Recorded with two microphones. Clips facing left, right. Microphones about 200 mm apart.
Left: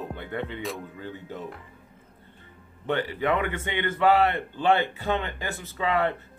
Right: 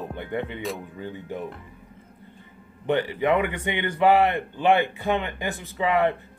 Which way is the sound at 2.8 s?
15° right (ahead or behind).